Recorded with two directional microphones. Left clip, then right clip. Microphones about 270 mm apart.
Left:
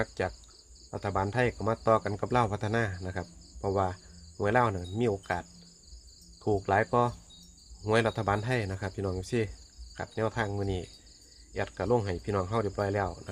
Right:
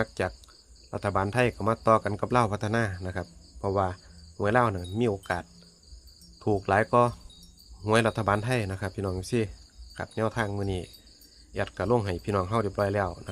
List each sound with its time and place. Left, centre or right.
0.0 s speech: centre